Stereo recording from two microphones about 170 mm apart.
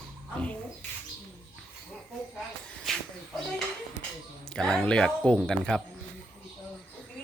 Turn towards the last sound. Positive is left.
turn(degrees=5)  # may be behind; listen again after turning